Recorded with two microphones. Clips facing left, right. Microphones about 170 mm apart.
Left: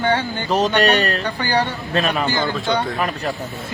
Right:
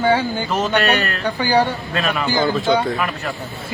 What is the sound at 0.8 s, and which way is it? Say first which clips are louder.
Speech: left 2 dB; 35° left (ahead or behind).